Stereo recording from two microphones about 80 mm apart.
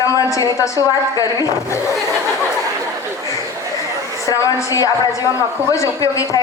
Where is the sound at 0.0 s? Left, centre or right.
Left.